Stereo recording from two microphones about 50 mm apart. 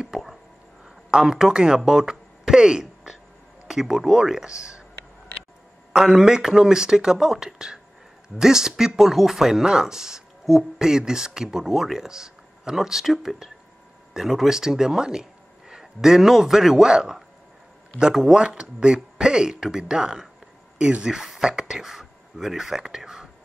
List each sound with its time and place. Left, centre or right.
0.1 s a sound: centre
0.8 s speech: centre
5.9 s speech: centre
18.4 s speech: centre